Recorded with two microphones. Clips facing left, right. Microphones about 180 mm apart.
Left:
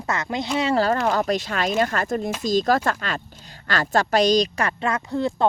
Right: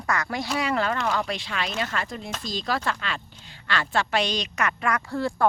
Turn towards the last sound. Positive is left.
turn(degrees=20)  # may be behind; listen again after turning